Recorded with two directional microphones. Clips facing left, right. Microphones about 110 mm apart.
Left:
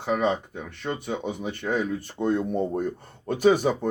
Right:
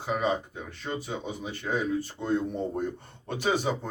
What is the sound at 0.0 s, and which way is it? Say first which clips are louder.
Speech: left 4 dB; 65° left (ahead or behind).